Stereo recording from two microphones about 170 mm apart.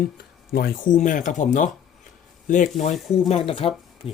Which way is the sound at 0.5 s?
55° left (ahead or behind).